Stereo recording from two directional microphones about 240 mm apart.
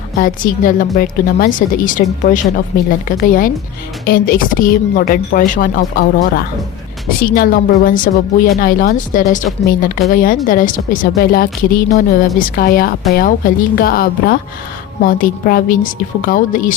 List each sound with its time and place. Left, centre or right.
0.2 s a woman's voice: left